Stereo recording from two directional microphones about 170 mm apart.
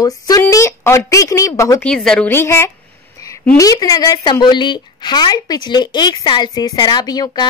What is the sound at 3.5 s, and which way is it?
A woman's voice, 20° left (ahead or behind).